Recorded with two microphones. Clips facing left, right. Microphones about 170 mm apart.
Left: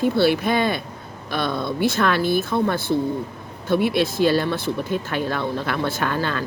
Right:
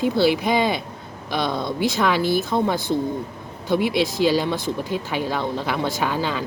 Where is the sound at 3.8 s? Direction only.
55° left (ahead or behind).